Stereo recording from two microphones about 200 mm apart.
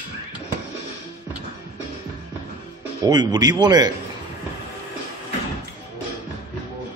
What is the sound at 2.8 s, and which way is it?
Speech, 20° right (ahead or behind).